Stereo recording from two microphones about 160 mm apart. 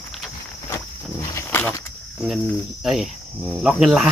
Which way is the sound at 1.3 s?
15° left (ahead or behind).